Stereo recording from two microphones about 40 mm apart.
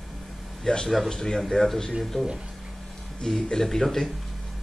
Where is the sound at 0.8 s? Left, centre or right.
Centre.